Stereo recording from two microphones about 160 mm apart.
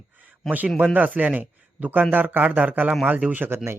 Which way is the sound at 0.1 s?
10° right (ahead or behind).